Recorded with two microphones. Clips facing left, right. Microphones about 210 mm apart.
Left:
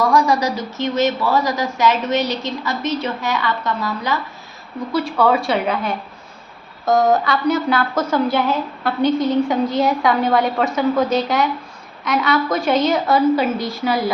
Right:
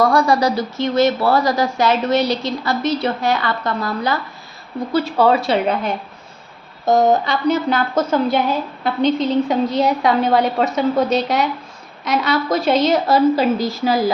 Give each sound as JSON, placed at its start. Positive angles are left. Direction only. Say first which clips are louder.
{"t": 0.1, "sound": "a woman's voice", "louder": "right 1 dB", "side_deg": -30}